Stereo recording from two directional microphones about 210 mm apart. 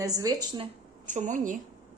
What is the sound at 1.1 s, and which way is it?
Speech, 35° right (ahead or behind).